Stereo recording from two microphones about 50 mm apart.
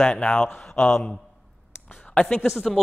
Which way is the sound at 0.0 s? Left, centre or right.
Centre.